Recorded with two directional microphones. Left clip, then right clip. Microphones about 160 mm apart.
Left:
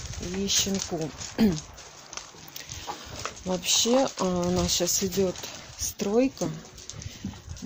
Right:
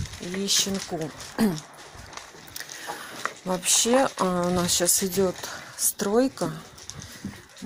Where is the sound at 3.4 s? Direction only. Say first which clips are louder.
Even; centre (ahead or behind).